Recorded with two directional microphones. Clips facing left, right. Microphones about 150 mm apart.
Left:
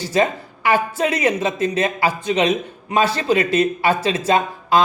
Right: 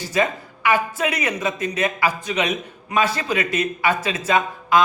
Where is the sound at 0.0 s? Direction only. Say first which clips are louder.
Left 3 dB; 30° left (ahead or behind).